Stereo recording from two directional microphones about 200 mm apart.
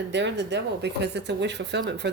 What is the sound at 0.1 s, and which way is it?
Speech, 60° right (ahead or behind).